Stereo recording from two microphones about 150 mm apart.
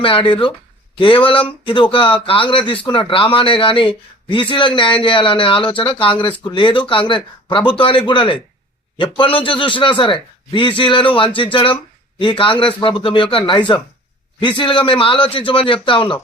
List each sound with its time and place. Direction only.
0.0 s a man's voice: 35° left (ahead or behind)